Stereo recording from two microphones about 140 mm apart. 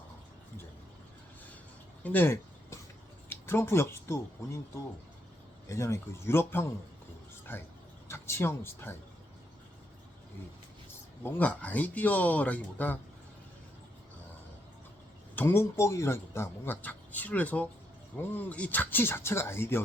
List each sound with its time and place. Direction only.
2.0 s speech: 15° left (ahead or behind)
11.2 s speech: 10° left (ahead or behind)
15.4 s speech: 15° left (ahead or behind)